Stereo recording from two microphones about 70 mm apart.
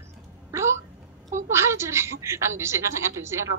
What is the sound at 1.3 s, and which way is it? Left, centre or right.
A woman's voice, right.